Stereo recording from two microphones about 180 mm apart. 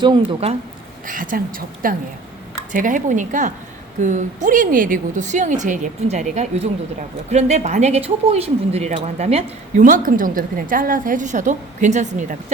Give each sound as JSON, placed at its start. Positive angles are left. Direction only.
{"t": 0.0, "sound": "speech", "side_deg": -25}
{"t": 1.0, "sound": "a woman's voice", "side_deg": -50}